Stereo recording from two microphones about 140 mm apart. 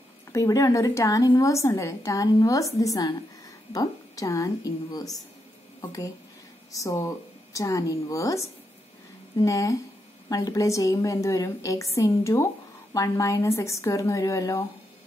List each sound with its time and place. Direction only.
0.3 s a woman's voice: 25° left (ahead or behind)